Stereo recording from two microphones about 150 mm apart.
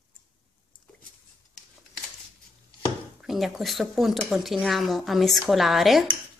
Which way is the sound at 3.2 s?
Centre (ahead or behind).